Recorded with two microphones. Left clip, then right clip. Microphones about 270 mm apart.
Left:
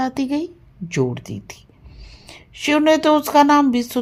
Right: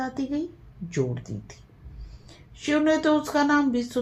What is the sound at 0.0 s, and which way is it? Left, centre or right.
A woman's voice, left.